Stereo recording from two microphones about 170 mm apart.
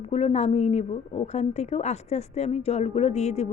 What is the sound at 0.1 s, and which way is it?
A woman's voice, 35° left (ahead or behind).